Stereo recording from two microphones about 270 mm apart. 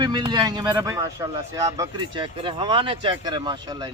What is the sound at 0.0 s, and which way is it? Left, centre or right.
Speech, centre.